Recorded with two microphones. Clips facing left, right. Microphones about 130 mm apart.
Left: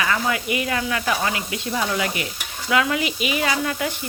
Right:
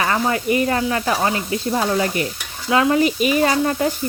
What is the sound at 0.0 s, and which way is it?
Sizzle, 35° right (ahead or behind).